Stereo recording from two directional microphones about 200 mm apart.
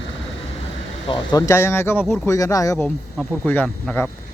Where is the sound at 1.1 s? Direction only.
20° left (ahead or behind).